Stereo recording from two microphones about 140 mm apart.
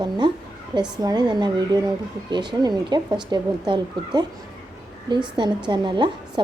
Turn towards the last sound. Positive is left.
turn(degrees=-35)  # may be behind; listen again after turning